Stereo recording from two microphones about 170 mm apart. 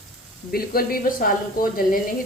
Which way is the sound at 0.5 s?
60° left (ahead or behind).